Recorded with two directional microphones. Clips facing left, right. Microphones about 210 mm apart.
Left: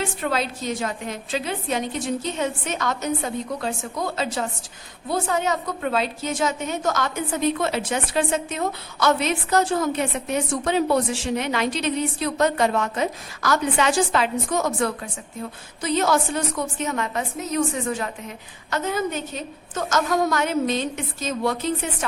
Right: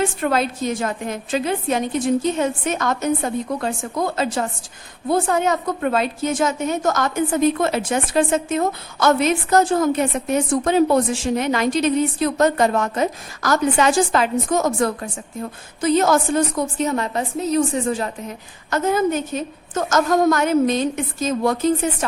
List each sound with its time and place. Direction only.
0.0 s a woman's voice: 50° right (ahead or behind); by 18.1 s 35° right (ahead or behind)
18.7 s a woman's voice: 45° right (ahead or behind)